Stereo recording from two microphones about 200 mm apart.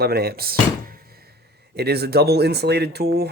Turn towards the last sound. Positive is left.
turn(degrees=-55)  # may be behind; listen again after turning